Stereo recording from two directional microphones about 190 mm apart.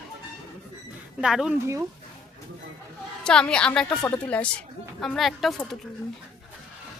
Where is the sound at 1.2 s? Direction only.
5° right (ahead or behind).